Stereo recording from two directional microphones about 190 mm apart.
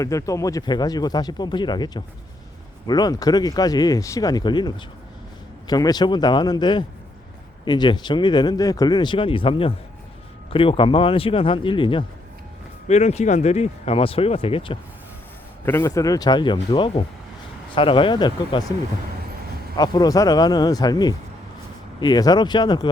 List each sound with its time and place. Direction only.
0.0 s speech: 15° left (ahead or behind)
15.6 s speech: 15° left (ahead or behind)
19.7 s speech: 20° left (ahead or behind)